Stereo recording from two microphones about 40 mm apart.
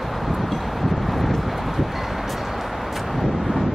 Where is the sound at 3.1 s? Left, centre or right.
Centre.